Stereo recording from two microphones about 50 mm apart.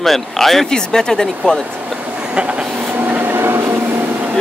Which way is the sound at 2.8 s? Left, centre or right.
Right.